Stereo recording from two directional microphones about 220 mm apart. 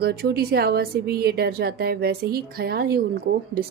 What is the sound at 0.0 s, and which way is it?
A woman's voice, 45° right (ahead or behind).